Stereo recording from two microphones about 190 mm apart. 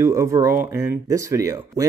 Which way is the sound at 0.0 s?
15° right (ahead or behind).